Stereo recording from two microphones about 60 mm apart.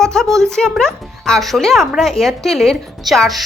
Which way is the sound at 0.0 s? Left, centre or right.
Centre.